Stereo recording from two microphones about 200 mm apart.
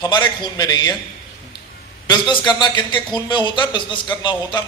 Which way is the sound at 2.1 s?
20° left (ahead or behind).